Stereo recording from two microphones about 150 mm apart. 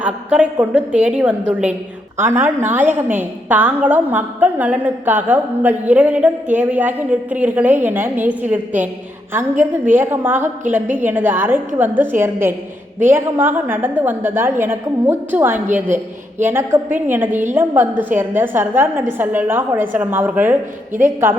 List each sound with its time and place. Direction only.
0.0 s a woman's voice: 10° right (ahead or behind)